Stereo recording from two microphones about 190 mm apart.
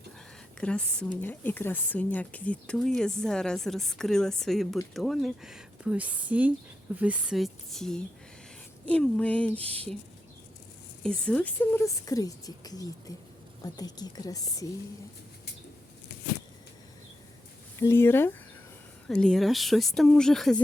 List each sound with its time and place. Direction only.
0.6 s speech: 5° left (ahead or behind)
11.0 s a woman's voice: 5° left (ahead or behind)
17.7 s speech: 15° left (ahead or behind)